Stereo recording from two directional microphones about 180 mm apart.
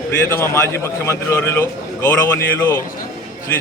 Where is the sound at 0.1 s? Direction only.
15° left (ahead or behind).